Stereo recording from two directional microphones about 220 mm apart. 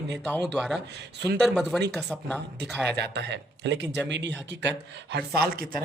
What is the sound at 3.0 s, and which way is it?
Speech, 50° right (ahead or behind).